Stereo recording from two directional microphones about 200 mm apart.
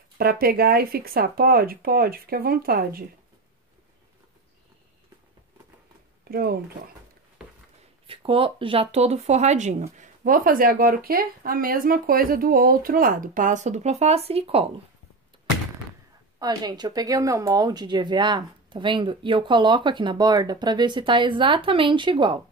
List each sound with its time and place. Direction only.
0.2 s speech: 50° right (ahead or behind)
6.2 s speech: 50° right (ahead or behind)
8.1 s speech: 25° right (ahead or behind)
16.3 s speech: 20° right (ahead or behind)